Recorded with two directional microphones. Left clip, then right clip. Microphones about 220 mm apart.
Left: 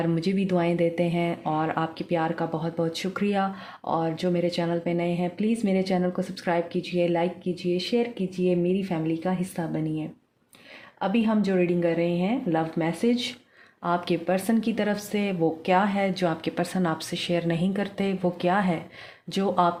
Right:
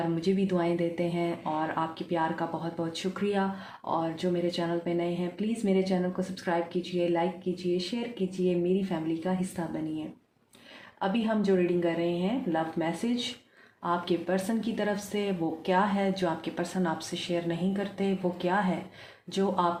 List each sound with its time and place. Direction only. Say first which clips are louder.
0.2 s speech: left 2 dB; 50° left (ahead or behind)
11.0 s speech: left 3 dB; 50° left (ahead or behind)